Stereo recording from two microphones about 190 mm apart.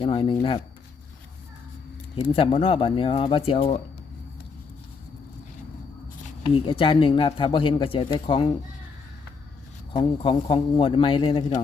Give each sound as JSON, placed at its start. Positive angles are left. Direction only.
{"t": 0.0, "sound": "speech", "side_deg": 30}
{"t": 2.1, "sound": "speech", "side_deg": 30}
{"t": 6.4, "sound": "speech", "side_deg": 30}
{"t": 9.9, "sound": "speech", "side_deg": 25}